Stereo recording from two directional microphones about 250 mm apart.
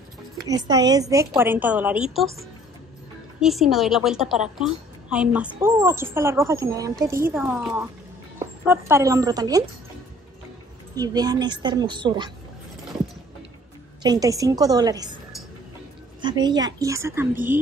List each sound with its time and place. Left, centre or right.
0.5 s a woman's voice: centre
11.0 s a woman's voice: centre
14.0 s a woman's voice: centre
16.2 s a woman's voice: centre